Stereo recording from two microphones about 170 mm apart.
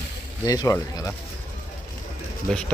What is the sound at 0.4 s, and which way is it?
Speech, 20° left (ahead or behind).